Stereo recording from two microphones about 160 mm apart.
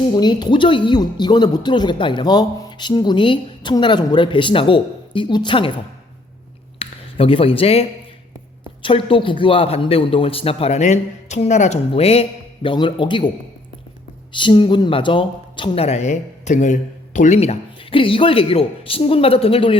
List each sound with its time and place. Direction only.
0.2 s speech: 25° left (ahead or behind)
6.7 s a sound: 35° left (ahead or behind)
8.8 s speech: 35° left (ahead or behind)
14.3 s speech: 30° left (ahead or behind)